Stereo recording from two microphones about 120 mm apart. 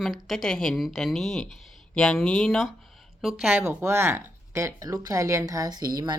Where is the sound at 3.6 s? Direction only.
20° right (ahead or behind).